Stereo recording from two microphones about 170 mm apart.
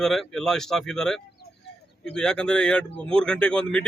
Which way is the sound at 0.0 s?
5° left (ahead or behind).